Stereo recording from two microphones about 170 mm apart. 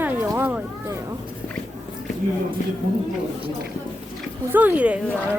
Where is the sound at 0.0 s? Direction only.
15° right (ahead or behind).